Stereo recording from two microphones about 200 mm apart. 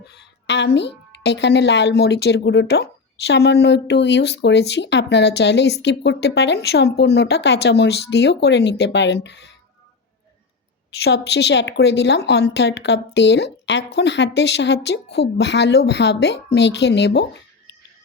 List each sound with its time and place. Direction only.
0.0 s a woman's voice: 55° left (ahead or behind)
11.0 s a woman's voice: 55° left (ahead or behind)